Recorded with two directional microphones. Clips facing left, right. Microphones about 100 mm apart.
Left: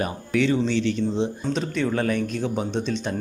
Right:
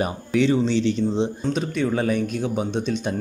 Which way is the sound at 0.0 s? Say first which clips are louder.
Right 2 dB; 20° right (ahead or behind).